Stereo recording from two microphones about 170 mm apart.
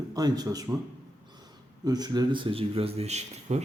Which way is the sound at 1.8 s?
25° right (ahead or behind).